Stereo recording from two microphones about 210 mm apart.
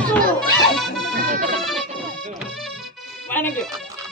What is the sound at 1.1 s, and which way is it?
Music, 40° right (ahead or behind).